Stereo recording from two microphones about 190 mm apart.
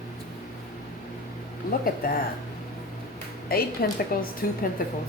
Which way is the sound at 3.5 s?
50° left (ahead or behind).